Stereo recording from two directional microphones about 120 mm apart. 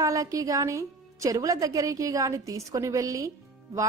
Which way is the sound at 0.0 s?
30° right (ahead or behind).